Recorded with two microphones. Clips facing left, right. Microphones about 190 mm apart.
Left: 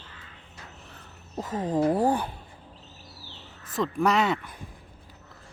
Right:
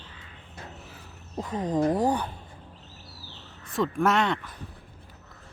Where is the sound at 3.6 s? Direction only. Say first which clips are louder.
Even; centre (ahead or behind).